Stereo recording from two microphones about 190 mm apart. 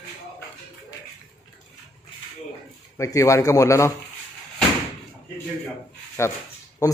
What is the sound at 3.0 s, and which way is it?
Speech, 15° left (ahead or behind).